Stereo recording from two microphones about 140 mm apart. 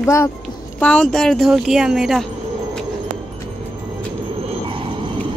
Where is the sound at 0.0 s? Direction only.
20° left (ahead or behind).